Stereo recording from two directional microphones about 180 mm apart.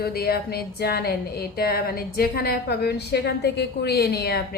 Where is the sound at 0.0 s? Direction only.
60° left (ahead or behind).